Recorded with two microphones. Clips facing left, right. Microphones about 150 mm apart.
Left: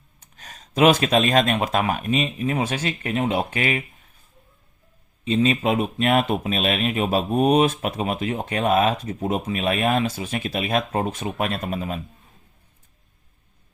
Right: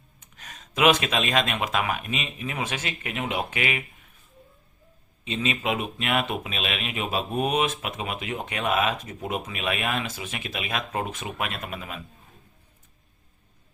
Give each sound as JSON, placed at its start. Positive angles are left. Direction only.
{"t": 0.2, "sound": "speech", "side_deg": 35}
{"t": 5.2, "sound": "speech", "side_deg": 40}